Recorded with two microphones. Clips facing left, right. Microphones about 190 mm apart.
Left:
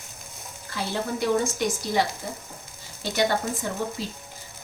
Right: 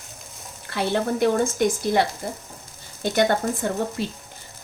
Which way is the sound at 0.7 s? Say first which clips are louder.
Right 6 dB; 60° right (ahead or behind).